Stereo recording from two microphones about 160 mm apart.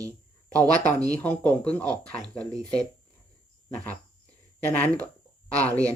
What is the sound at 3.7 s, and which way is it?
Speech, 10° left (ahead or behind).